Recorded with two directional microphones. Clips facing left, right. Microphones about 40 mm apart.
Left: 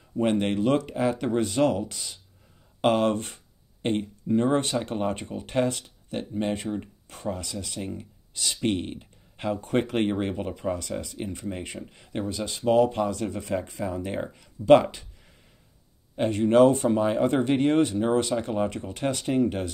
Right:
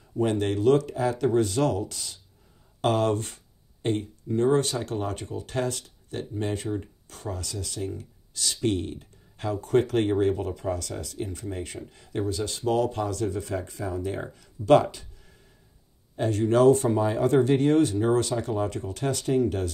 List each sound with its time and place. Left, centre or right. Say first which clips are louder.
0.2 s speech: even; left
2.8 s speech: left 1 dB; left
16.2 s speech: left 3 dB; left
16.9 s speech: even; left